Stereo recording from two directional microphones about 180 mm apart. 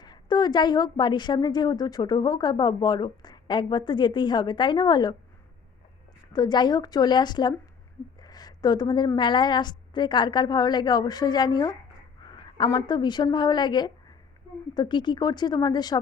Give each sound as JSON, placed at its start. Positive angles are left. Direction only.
{"t": 0.0, "sound": "a woman's voice", "side_deg": 25}
{"t": 6.3, "sound": "a woman's voice", "side_deg": 25}